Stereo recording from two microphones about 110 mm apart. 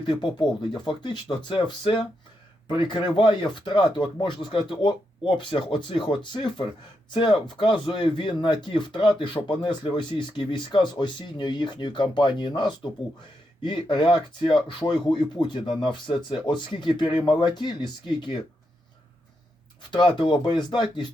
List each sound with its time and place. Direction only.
0.0 s speech: 45° left (ahead or behind)
19.9 s speech: 45° left (ahead or behind)